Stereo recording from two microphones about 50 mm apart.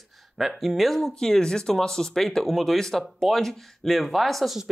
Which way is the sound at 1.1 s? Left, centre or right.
Centre.